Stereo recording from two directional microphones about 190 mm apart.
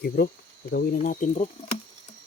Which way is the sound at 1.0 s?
40° left (ahead or behind).